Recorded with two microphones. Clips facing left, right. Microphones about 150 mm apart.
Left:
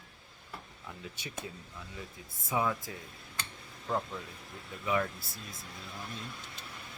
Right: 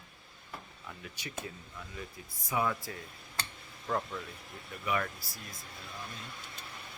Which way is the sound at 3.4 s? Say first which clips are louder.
Right 2 dB; 35° right (ahead or behind).